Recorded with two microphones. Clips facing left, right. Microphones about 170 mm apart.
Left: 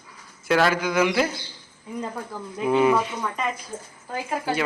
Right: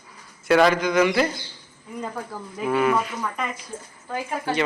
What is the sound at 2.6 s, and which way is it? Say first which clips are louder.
Speech: left 2 dB; 20° left (ahead or behind).